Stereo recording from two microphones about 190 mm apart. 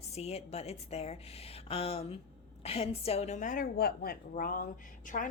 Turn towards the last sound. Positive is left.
turn(degrees=45)  # may be behind; listen again after turning